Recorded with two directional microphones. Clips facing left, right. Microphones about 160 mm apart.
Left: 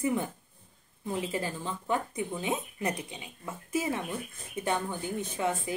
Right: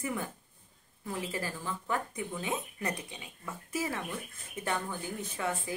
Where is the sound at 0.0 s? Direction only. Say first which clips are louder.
Left 6 dB; 20° left (ahead or behind).